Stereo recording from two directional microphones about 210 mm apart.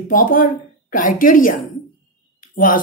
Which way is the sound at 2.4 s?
40° left (ahead or behind).